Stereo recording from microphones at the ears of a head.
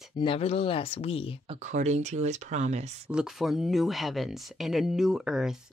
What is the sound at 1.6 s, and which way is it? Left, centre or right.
Speech, right.